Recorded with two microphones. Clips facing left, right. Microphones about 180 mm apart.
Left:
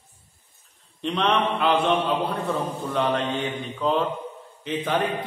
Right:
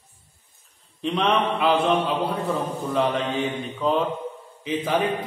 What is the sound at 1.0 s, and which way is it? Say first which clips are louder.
A man's voice: right 1 dB; centre (ahead or behind).